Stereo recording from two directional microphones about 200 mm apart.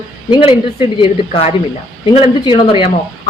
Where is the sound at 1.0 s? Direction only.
30° left (ahead or behind).